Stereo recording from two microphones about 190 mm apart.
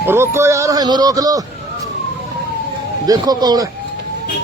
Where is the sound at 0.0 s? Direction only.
15° right (ahead or behind).